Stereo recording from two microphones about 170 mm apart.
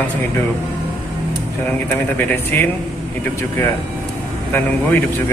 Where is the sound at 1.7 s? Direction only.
10° left (ahead or behind).